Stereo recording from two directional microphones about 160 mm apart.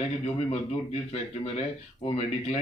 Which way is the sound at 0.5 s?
40° left (ahead or behind).